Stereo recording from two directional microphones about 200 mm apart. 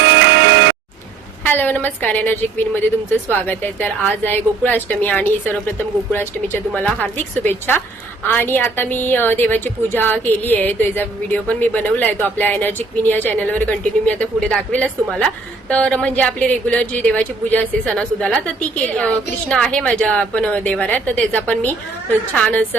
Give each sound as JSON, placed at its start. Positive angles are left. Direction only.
{"t": 0.0, "sound": "music", "side_deg": -60}
{"t": 1.5, "sound": "a woman's voice", "side_deg": 10}